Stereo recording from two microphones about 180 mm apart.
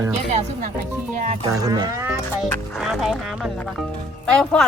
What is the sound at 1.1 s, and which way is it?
Music, 45° right (ahead or behind).